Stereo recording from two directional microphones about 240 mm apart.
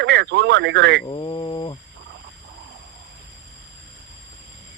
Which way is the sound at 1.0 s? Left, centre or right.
Centre.